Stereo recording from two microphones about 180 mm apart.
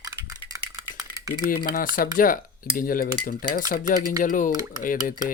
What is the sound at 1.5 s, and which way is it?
Speech, 50° left (ahead or behind).